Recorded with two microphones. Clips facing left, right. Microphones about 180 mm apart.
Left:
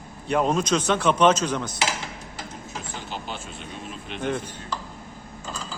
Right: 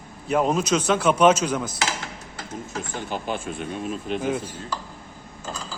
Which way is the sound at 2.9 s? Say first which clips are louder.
Right 7 dB; 50° right (ahead or behind).